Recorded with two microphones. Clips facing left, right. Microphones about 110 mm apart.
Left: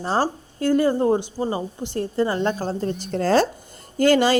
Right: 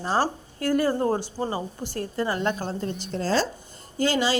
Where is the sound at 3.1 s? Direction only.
60° left (ahead or behind).